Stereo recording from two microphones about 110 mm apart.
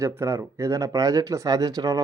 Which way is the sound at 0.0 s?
25° right (ahead or behind).